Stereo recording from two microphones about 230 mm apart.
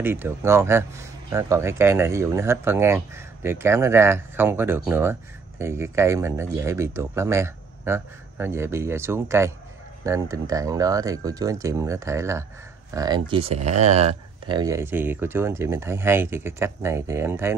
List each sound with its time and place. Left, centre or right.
0.0 s speech: centre; by 14.6 s right
14.6 s speech: centre